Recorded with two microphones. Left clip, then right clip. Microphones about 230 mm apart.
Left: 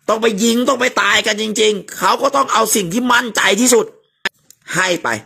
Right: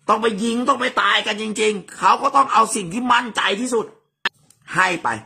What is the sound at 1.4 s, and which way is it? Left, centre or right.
Speech, centre.